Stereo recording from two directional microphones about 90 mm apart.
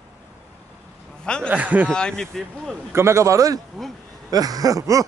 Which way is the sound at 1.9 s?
10° left (ahead or behind).